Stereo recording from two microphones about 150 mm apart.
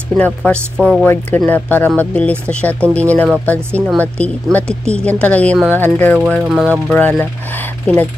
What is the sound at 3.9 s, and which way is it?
Speech, 10° left (ahead or behind).